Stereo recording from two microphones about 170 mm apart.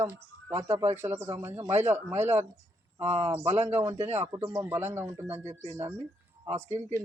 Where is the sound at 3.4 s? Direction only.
40° right (ahead or behind).